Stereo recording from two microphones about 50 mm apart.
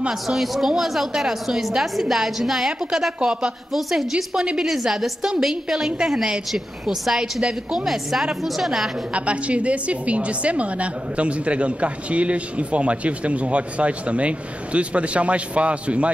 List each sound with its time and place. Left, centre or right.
0.1 s a woman's voice: centre
9.1 s a woman's voice: right